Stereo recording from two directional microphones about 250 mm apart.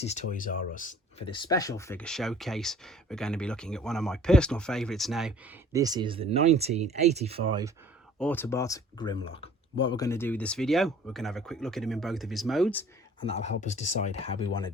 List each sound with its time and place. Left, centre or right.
0.0 s speech: left
1.3 s speech: centre
5.7 s speech: centre
8.2 s speech: centre
13.2 s speech: left